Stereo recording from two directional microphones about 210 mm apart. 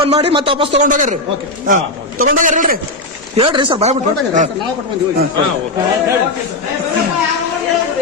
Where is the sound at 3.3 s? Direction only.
25° right (ahead or behind).